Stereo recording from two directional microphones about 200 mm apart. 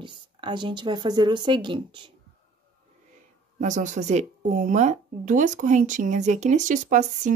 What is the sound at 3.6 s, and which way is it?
Speech, 40° right (ahead or behind).